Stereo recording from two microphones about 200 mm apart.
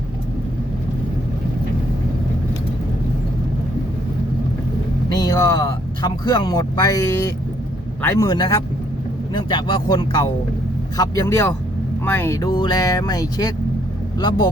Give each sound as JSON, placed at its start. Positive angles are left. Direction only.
{"t": 5.1, "sound": "speech", "side_deg": 20}